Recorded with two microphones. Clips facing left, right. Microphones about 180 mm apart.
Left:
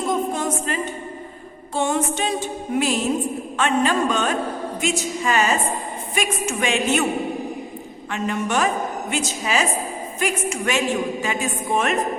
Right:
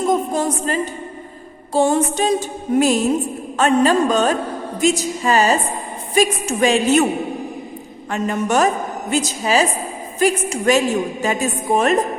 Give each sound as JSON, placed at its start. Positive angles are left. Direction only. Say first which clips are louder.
{"t": 0.3, "sound": "a capella", "louder": "right 4 dB", "side_deg": -35}
{"t": 1.7, "sound": "a woman's voice", "louder": "right 6 dB", "side_deg": -35}
{"t": 8.1, "sound": "a woman's voice", "louder": "right 4 dB", "side_deg": -40}